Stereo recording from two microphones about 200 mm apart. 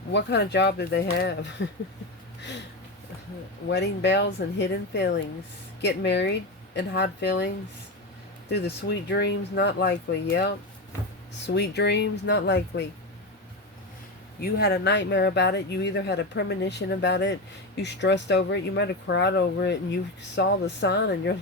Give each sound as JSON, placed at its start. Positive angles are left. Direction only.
{"t": 0.1, "sound": "speech", "side_deg": 60}
{"t": 3.7, "sound": "speech", "side_deg": 60}
{"t": 14.4, "sound": "speech", "side_deg": 55}